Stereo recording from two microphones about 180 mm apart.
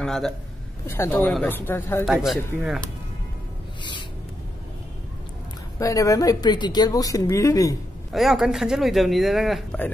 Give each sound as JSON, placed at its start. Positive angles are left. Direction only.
{"t": 0.0, "sound": "a man's voice", "side_deg": 0}
{"t": 0.8, "sound": "speech", "side_deg": 15}
{"t": 2.0, "sound": "speech", "side_deg": 0}
{"t": 5.8, "sound": "speech", "side_deg": 20}
{"t": 8.1, "sound": "speech", "side_deg": 0}